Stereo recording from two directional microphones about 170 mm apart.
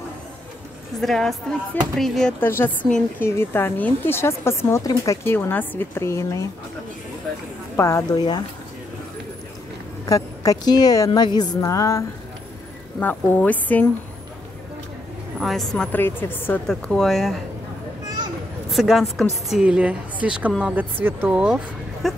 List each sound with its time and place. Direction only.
1.0 s a woman's voice: centre (ahead or behind)
2.4 s a woman's voice: 15° left (ahead or behind)
7.7 s a woman's voice: 15° left (ahead or behind)
10.0 s a woman's voice: 20° left (ahead or behind)
13.0 s a woman's voice: 10° left (ahead or behind)
15.3 s a woman's voice: centre (ahead or behind)
18.7 s a woman's voice: centre (ahead or behind)